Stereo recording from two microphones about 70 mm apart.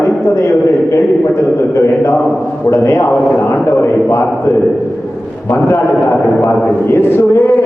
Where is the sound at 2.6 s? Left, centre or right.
Left.